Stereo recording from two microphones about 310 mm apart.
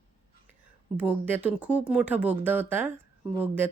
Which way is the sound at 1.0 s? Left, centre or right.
Centre.